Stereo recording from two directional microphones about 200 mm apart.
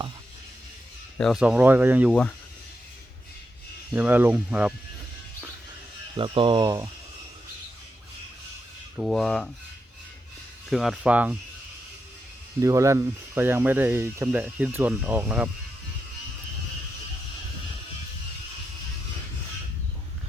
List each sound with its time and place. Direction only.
1.2 s speech: centre (ahead or behind)
3.9 s speech: 10° right (ahead or behind)
6.1 s speech: 25° right (ahead or behind)
9.0 s speech: centre (ahead or behind)
10.7 s speech: centre (ahead or behind)
12.5 s speech: 15° right (ahead or behind)